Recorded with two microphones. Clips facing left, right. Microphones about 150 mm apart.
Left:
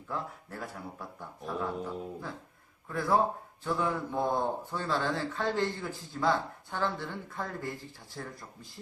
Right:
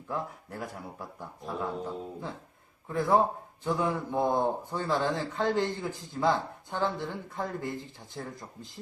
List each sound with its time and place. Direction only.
0.1 s a man's voice: 15° right (ahead or behind)